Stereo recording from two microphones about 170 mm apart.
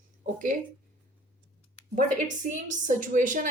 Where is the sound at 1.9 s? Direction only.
50° right (ahead or behind).